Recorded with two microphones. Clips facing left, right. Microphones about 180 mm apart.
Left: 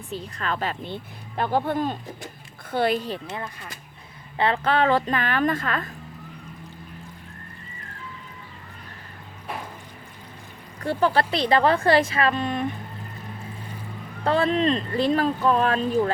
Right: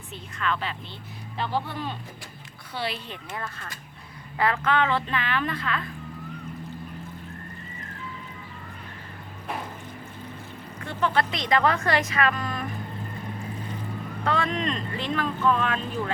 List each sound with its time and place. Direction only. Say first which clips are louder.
0.1 s a woman's voice: left 1 dB; 35° left (ahead or behind)
3.3 s speech: left 2 dB; 20° left (ahead or behind)
4.4 s a woman's voice: left 2 dB; 30° left (ahead or behind); by 5.9 s 45° left (ahead or behind)
10.8 s speech: left 4 dB; 35° left (ahead or behind)
14.3 s speech: left 6 dB; 30° left (ahead or behind)